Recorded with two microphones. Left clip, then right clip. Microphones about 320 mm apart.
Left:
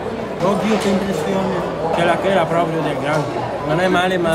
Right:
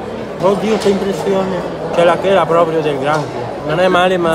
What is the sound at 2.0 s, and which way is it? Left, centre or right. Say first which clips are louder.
Speech: right 6 dB; centre.